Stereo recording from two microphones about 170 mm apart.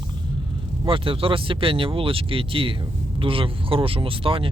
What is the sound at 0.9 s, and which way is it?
Speech, 30° right (ahead or behind).